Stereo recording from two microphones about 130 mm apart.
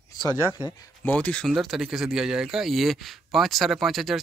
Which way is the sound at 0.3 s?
20° right (ahead or behind).